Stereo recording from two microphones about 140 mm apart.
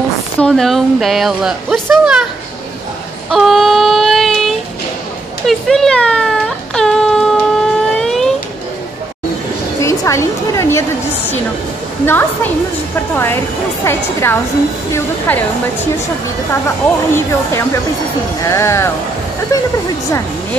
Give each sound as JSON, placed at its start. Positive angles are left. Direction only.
{"t": 0.4, "sound": "a woman's voice", "side_deg": 5}
{"t": 3.3, "sound": "child singing", "side_deg": 0}
{"t": 5.5, "sound": "baby cry", "side_deg": 0}
{"t": 9.8, "sound": "a woman's voice", "side_deg": 20}
{"t": 13.1, "sound": "speech", "side_deg": 15}
{"t": 14.9, "sound": "speech", "side_deg": 15}
{"t": 16.6, "sound": "speech", "side_deg": 20}